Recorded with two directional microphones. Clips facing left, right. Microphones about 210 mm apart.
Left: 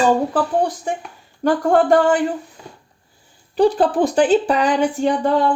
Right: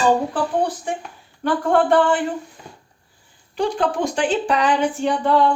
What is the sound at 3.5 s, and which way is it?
Speech, 35° left (ahead or behind).